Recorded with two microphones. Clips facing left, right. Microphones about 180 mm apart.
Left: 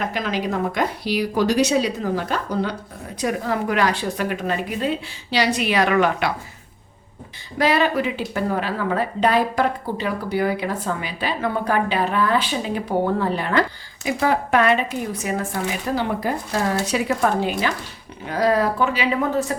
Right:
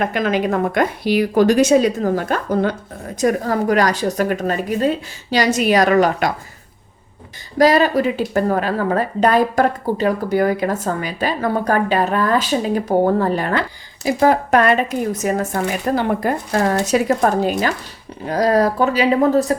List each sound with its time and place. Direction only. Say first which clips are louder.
0.0 s a woman's voice: right 6 dB; 55° right (ahead or behind)
7.6 s a woman's voice: right 5 dB; 40° right (ahead or behind); by 16.6 s 55° right (ahead or behind)
16.8 s a woman's voice: right 5 dB; 45° right (ahead or behind)